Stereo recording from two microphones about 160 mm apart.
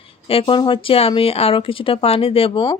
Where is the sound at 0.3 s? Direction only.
35° left (ahead or behind).